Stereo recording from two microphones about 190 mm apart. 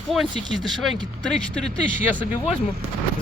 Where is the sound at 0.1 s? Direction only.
Centre (ahead or behind).